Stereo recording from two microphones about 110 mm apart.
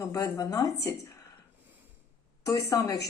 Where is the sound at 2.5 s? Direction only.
30° left (ahead or behind).